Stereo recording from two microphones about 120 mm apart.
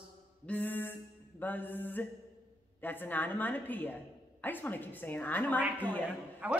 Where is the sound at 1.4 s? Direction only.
15° left (ahead or behind).